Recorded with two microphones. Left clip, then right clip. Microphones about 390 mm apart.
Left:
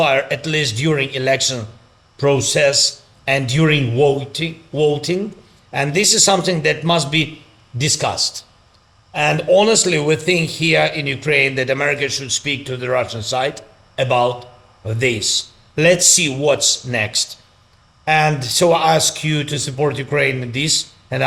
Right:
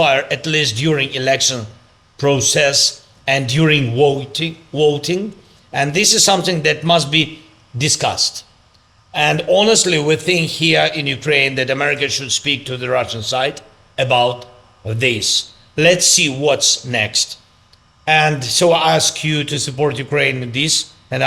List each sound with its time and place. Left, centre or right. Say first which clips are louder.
0.0 s speech: right 1 dB; left